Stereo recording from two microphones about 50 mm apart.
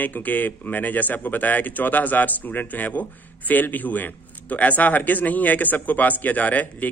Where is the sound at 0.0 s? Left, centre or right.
Left.